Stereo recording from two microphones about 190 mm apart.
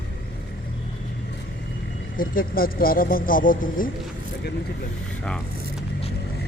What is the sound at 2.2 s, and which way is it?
Speech, 50° left (ahead or behind).